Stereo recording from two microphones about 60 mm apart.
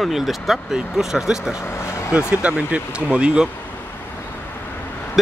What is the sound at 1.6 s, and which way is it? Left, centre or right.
Vehicle, left.